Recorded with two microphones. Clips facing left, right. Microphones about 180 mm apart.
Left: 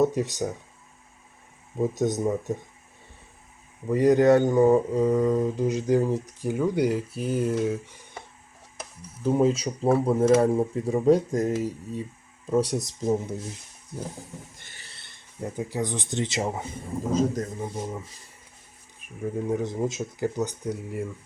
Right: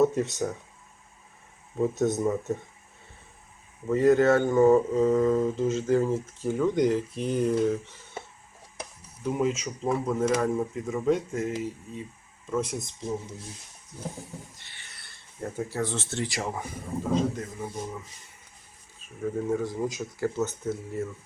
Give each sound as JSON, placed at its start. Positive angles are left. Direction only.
{"t": 0.0, "sound": "mantra", "side_deg": 15}
{"t": 1.8, "sound": "mantra", "side_deg": 15}
{"t": 3.8, "sound": "mantra", "side_deg": 15}
{"t": 9.2, "sound": "speech", "side_deg": 30}
{"t": 14.5, "sound": "a sound", "side_deg": 45}
{"t": 14.8, "sound": "speech", "side_deg": 25}
{"t": 17.1, "sound": "speech", "side_deg": 40}
{"t": 18.9, "sound": "speech", "side_deg": 15}
{"t": 20.1, "sound": "mantra", "side_deg": 15}